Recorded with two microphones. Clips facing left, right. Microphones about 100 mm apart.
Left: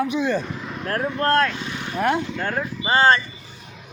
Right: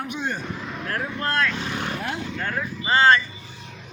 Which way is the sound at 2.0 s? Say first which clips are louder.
Left 9 dB; 70° left (ahead or behind).